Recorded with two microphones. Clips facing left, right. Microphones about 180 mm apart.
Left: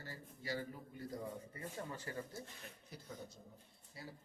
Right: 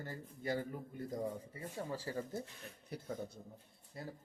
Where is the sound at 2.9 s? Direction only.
55° right (ahead or behind).